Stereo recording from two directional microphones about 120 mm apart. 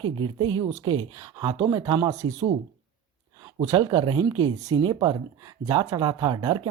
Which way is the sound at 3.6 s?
35° right (ahead or behind).